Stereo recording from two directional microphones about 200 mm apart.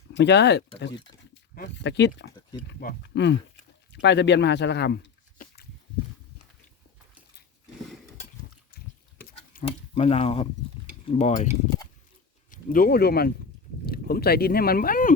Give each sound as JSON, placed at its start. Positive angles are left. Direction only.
{"t": 0.1, "sound": "speech", "side_deg": 60}
{"t": 8.7, "sound": "a sound", "side_deg": 50}
{"t": 9.6, "sound": "speech", "side_deg": 30}
{"t": 11.0, "sound": "stir", "side_deg": 30}
{"t": 12.5, "sound": "speech", "side_deg": 45}